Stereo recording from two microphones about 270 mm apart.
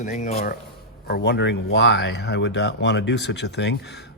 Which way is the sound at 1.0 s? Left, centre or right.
Left.